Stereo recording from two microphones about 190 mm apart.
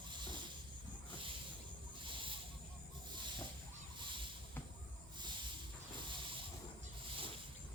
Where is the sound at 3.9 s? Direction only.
25° right (ahead or behind).